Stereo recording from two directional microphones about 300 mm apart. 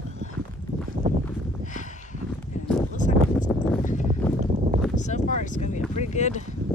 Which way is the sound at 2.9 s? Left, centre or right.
Left.